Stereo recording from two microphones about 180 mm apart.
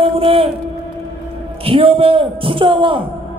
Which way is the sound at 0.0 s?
30° right (ahead or behind).